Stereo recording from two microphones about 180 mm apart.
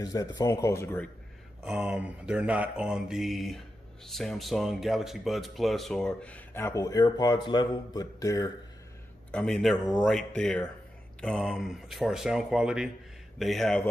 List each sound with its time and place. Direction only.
0.0 s speech: 20° left (ahead or behind)
1.6 s mantra: 5° right (ahead or behind); by 8.5 s 20° left (ahead or behind)
9.3 s mantra: 5° left (ahead or behind)